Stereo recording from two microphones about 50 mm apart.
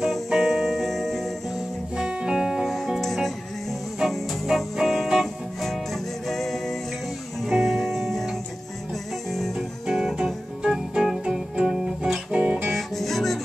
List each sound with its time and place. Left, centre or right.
0.0 s music: centre
2.0 s music: centre
2.6 s music: centre
4.7 s music: centre
9.6 s music: centre
12.3 s guitar: centre
12.7 s music: centre